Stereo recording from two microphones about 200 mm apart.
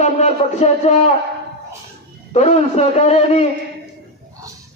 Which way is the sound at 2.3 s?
35° left (ahead or behind).